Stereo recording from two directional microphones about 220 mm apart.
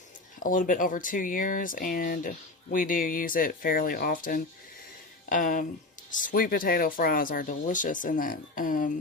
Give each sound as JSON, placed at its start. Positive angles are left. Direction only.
{"t": 0.3, "sound": "speech", "side_deg": 40}